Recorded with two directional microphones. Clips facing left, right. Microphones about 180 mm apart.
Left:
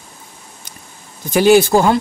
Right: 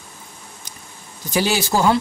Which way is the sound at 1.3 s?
55° left (ahead or behind).